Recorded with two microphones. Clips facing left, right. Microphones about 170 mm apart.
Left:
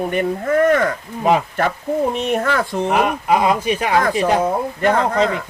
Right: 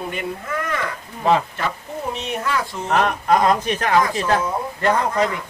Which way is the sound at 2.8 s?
10° left (ahead or behind).